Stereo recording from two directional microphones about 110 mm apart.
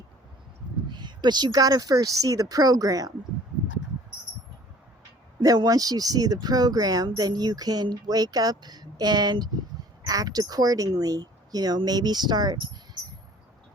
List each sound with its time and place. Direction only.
0.9 s speech: 40° right (ahead or behind)
5.4 s speech: 35° right (ahead or behind)